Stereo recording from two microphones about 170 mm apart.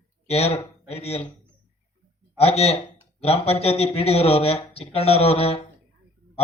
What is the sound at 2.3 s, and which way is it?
Speech, 35° left (ahead or behind).